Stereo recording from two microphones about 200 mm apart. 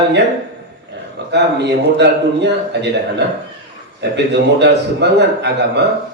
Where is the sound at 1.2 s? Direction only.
60° right (ahead or behind).